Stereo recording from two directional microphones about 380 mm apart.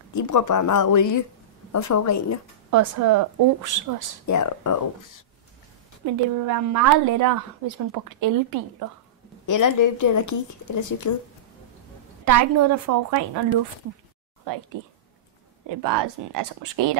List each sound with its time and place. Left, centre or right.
0.1 s a woman's voice: left
2.7 s a woman's voice: right
4.3 s a woman's voice: left
6.0 s a woman's voice: right
9.5 s a woman's voice: left
12.3 s a woman's voice: right
14.8 s speech: right
15.8 s speech: right